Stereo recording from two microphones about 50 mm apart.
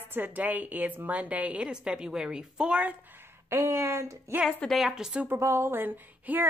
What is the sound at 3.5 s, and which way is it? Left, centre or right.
Speech, right.